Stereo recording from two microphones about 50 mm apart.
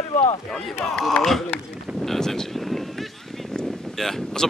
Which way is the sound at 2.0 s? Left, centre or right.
Centre.